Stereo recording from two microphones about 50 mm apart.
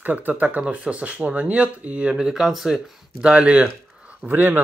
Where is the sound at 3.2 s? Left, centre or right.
Right.